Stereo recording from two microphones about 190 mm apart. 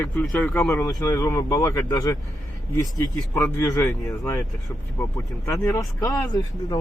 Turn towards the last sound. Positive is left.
turn(degrees=20)  # may be behind; listen again after turning